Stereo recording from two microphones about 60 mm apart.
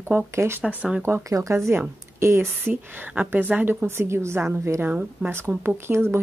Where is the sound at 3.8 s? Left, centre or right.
Right.